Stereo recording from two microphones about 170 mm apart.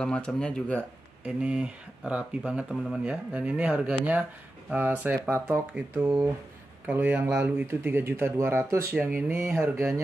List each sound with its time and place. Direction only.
0.0 s speech: 5° left (ahead or behind)
1.2 s speech: 5° right (ahead or behind)